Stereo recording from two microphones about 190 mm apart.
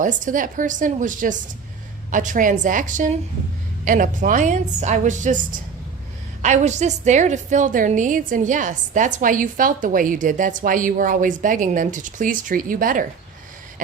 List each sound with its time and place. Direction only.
0.0 s a woman's voice: 45° right (ahead or behind)